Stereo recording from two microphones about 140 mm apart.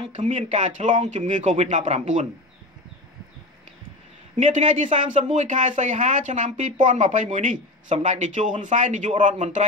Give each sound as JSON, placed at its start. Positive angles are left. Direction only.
{"t": 0.1, "sound": "speech", "side_deg": -60}
{"t": 4.4, "sound": "speech", "side_deg": -60}